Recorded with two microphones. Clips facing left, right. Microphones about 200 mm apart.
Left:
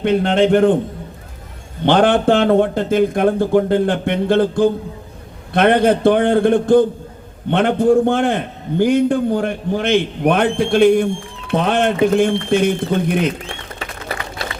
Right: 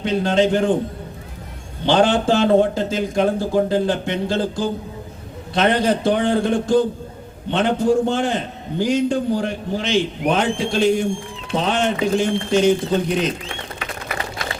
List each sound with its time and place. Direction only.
0.0 s a man's voice: 60° left (ahead or behind)
1.8 s a man's voice: 60° left (ahead or behind)